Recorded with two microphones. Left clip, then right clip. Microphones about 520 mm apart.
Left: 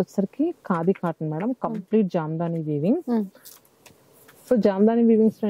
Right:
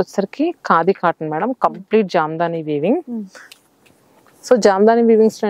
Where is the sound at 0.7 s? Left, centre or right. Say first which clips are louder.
Right 14 dB; centre.